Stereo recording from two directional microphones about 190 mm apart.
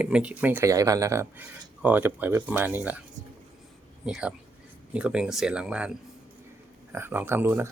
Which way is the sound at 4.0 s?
5° right (ahead or behind).